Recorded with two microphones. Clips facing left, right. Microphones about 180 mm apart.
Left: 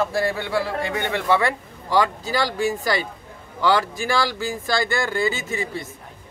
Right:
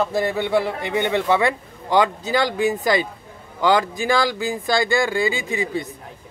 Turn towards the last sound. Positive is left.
turn(degrees=-15)  # may be behind; listen again after turning